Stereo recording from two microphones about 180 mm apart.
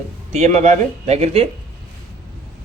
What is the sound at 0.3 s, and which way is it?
Speech, 40° right (ahead or behind).